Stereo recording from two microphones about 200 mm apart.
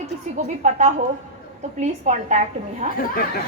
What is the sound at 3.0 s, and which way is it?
Speech, 45° left (ahead or behind).